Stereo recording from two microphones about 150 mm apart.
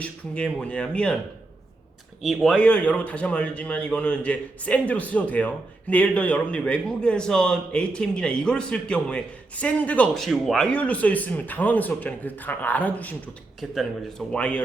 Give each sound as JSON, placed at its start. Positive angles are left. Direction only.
{"t": 0.0, "sound": "speech", "side_deg": 10}
{"t": 2.2, "sound": "speech", "side_deg": 0}
{"t": 13.6, "sound": "a man's voice", "side_deg": 0}